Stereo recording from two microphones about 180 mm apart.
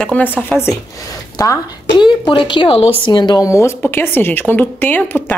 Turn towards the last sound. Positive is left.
turn(degrees=10)  # may be behind; listen again after turning